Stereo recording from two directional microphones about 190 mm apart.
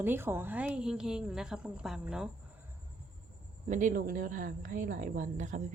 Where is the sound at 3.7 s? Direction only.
45° right (ahead or behind).